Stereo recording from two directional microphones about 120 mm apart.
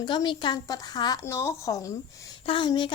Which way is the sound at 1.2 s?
20° left (ahead or behind).